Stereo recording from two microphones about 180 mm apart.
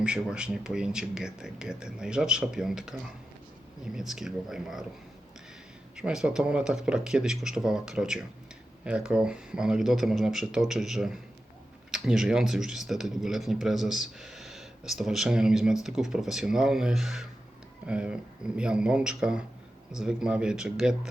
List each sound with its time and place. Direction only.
0.0 s speech: 5° right (ahead or behind)
6.0 s speech: 5° right (ahead or behind)